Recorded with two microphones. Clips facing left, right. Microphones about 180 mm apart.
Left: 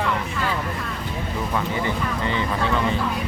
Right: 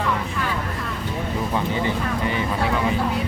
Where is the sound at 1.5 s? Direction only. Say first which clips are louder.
Right 1 dB; 25° right (ahead or behind).